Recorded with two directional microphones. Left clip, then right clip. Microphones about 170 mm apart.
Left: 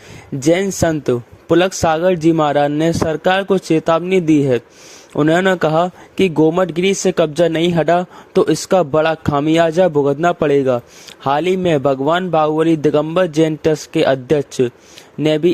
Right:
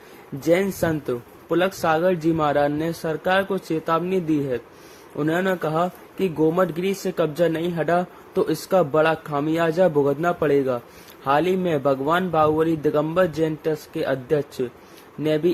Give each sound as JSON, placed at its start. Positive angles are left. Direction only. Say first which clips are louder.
{"t": 0.4, "sound": "speech", "louder": "left 6 dB", "side_deg": 50}